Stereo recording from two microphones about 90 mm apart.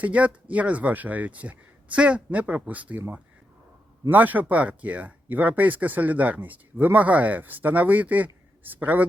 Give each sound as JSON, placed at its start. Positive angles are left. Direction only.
{"t": 0.0, "sound": "speech", "side_deg": -15}
{"t": 4.1, "sound": "speech", "side_deg": -20}